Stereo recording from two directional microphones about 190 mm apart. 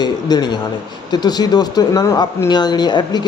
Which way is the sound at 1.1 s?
20° left (ahead or behind).